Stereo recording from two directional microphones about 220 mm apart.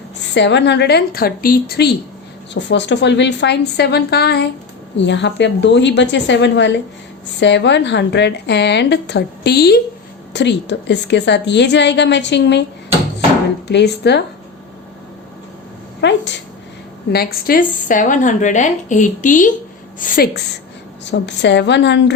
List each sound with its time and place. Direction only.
0.3 s a woman's voice: 50° left (ahead or behind)
13.7 s a woman's voice: 50° left (ahead or behind)
16.0 s a sound: 50° left (ahead or behind)
17.1 s a woman's voice: 45° left (ahead or behind)
21.0 s a woman's voice: 55° left (ahead or behind)